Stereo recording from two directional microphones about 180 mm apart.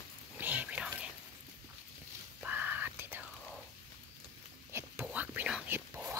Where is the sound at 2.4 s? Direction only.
10° right (ahead or behind).